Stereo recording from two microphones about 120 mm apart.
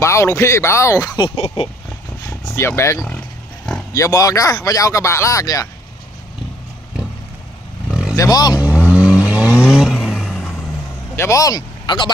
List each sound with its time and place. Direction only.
0.0 s speech: 25° left (ahead or behind)
2.2 s vehicle: 25° left (ahead or behind)
3.9 s speech: 30° left (ahead or behind)
7.9 s vehicle: 5° right (ahead or behind)
8.2 s speech: 35° left (ahead or behind)
8.5 s vehicle: 10° right (ahead or behind)
11.1 s speech: 25° left (ahead or behind)